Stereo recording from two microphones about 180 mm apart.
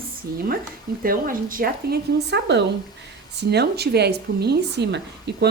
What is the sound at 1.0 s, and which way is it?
A woman's voice, 50° right (ahead or behind).